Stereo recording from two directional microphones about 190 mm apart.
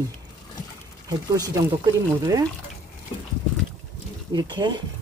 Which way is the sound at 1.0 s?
20° right (ahead or behind).